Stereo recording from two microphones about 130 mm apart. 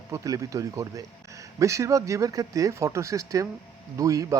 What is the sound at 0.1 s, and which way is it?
Speech, 25° right (ahead or behind).